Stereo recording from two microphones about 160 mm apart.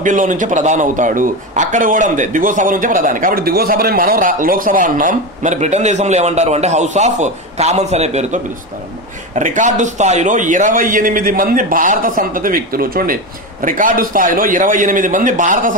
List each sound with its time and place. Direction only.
0.0 s a man's voice: 55° right (ahead or behind)